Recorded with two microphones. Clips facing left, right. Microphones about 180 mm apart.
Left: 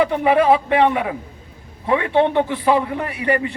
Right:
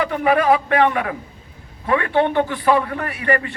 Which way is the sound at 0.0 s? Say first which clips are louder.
Left 2 dB; 25° left (ahead or behind).